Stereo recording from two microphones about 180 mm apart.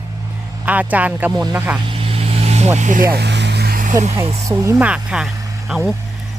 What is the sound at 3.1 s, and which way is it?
Vehicle, 70° right (ahead or behind).